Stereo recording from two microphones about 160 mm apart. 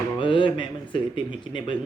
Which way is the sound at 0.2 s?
30° left (ahead or behind).